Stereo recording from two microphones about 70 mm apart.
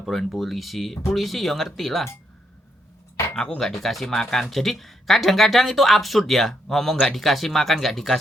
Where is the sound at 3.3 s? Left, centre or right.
Centre.